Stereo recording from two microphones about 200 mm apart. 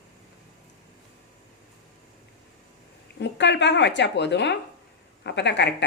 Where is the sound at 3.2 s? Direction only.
60° left (ahead or behind).